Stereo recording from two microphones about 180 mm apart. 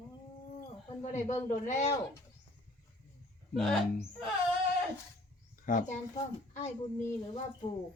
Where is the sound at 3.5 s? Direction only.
Centre (ahead or behind).